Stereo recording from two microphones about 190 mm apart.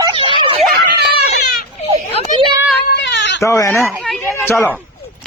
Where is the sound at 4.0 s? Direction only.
Centre (ahead or behind).